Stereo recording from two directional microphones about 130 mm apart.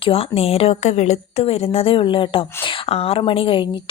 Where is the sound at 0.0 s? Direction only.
45° left (ahead or behind).